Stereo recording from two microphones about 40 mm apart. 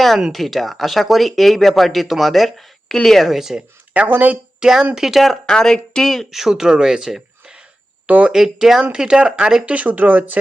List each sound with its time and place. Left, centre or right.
0.3 s speech: centre
3.3 s speech: centre
3.9 s speech: right
4.6 s speech: centre
4.9 s speech: centre
5.5 s speech: centre
6.3 s speech: centre
8.0 s speech: right
8.3 s speech: centre
9.6 s speech: right